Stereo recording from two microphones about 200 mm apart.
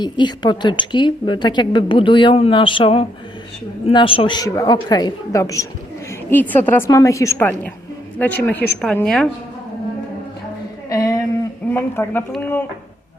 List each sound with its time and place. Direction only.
0.0 s a woman's voice: 20° left (ahead or behind); by 9.3 s 5° left (ahead or behind)
10.8 s a sound: 15° left (ahead or behind)
11.7 s a woman's voice: 10° left (ahead or behind)